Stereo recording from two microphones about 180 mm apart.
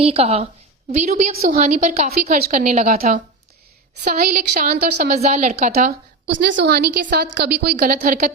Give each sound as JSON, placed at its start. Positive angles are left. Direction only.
{"t": 0.0, "sound": "a woman's voice", "side_deg": -35}
{"t": 2.9, "sound": "a woman's voice", "side_deg": -55}
{"t": 5.1, "sound": "a woman's voice", "side_deg": -40}
{"t": 5.7, "sound": "a woman's voice", "side_deg": -60}